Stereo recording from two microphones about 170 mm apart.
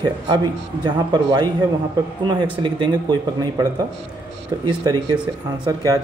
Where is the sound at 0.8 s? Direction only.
25° right (ahead or behind).